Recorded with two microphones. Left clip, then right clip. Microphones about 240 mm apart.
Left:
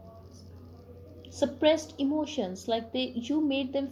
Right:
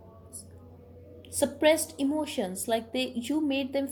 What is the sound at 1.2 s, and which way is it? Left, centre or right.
A woman's voice, right.